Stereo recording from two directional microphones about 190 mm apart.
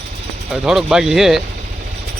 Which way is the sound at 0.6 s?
Centre (ahead or behind).